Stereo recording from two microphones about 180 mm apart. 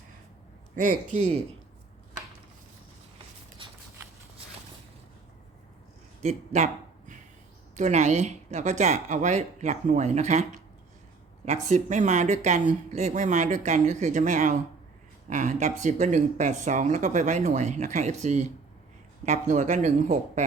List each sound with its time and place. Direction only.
0.8 s a man's voice: 45° right (ahead or behind)
6.2 s speech: 40° right (ahead or behind)
7.8 s speech: 40° right (ahead or behind)